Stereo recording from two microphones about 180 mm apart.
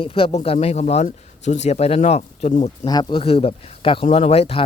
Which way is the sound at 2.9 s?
25° left (ahead or behind).